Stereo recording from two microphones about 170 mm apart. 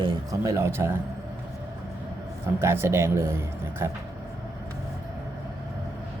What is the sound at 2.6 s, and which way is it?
A man's voice, 15° right (ahead or behind).